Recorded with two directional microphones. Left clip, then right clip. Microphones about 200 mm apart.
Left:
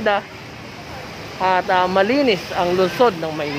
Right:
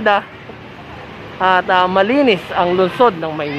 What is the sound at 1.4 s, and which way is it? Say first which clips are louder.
Speech: right 4 dB; 15° right (ahead or behind).